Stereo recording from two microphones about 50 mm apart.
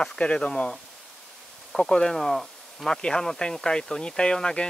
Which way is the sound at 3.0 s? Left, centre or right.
Centre.